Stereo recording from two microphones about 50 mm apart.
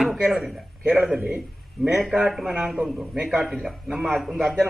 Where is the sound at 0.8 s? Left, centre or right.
Right.